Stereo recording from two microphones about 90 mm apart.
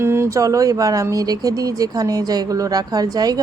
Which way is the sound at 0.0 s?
30° right (ahead or behind).